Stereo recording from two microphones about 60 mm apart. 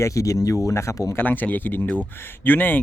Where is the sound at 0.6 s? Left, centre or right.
Left.